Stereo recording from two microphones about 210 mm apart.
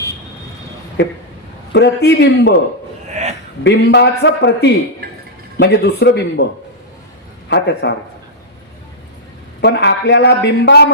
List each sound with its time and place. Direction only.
1.7 s a man's voice: 55° left (ahead or behind)
3.1 s a sound: 35° right (ahead or behind)
3.6 s a man's voice: 55° left (ahead or behind)
7.5 s a man's voice: 55° left (ahead or behind)
9.6 s a man's voice: 55° left (ahead or behind)